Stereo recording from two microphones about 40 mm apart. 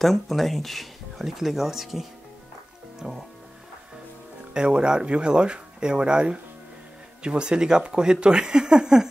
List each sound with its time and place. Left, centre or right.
0.0 s speech: centre
3.0 s speech: centre
4.6 s speech: right